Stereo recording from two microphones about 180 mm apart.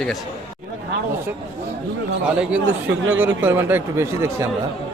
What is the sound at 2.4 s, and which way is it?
Speech, 5° right (ahead or behind).